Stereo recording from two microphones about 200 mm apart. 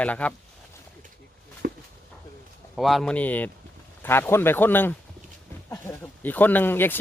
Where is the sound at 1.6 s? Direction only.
45° right (ahead or behind).